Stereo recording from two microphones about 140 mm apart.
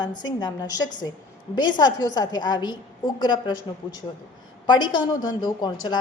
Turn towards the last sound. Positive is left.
turn(degrees=30)  # may be behind; listen again after turning